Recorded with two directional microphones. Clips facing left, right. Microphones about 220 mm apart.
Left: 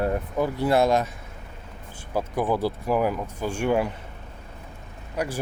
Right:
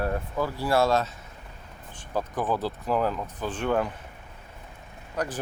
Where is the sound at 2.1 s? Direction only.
10° left (ahead or behind).